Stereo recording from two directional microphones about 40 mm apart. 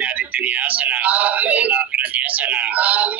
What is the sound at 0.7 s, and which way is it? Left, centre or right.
Speech, right.